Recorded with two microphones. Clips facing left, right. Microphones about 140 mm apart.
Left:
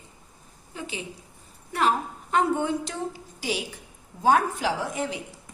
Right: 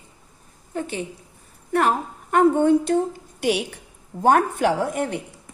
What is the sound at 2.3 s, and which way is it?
A woman's voice, 50° right (ahead or behind).